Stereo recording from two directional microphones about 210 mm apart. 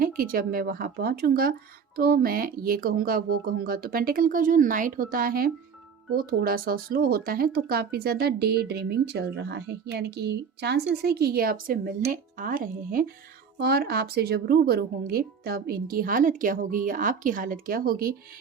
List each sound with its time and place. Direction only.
0.0 s speech: 45° right (ahead or behind)